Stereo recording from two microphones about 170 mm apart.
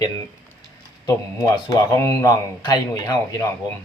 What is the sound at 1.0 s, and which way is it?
Speech, 20° left (ahead or behind).